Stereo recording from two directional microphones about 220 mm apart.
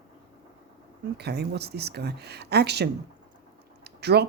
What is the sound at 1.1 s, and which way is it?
Speech, 50° right (ahead or behind).